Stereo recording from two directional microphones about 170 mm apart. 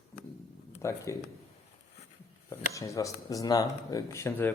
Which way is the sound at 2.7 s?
20° left (ahead or behind).